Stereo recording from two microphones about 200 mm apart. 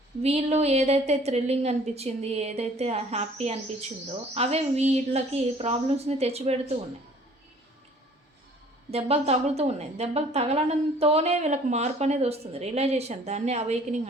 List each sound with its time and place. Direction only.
0.2 s a woman's voice: 30° right (ahead or behind)
8.9 s a woman's voice: 30° right (ahead or behind)